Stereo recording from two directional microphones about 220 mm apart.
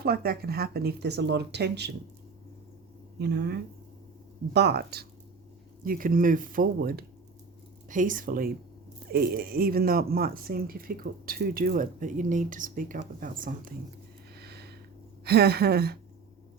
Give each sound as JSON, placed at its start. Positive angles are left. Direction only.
{"t": 0.0, "sound": "speech", "side_deg": -45}
{"t": 3.2, "sound": "speech", "side_deg": -50}
{"t": 14.3, "sound": "a sound", "side_deg": -50}
{"t": 15.2, "sound": "speech", "side_deg": -45}